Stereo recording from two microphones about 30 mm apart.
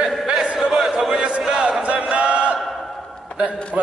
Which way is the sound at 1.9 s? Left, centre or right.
Right.